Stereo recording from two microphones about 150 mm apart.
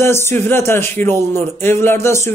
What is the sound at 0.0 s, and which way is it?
A man's voice, 15° left (ahead or behind).